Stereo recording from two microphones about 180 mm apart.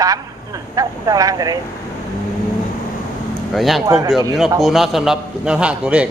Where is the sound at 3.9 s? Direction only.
20° right (ahead or behind).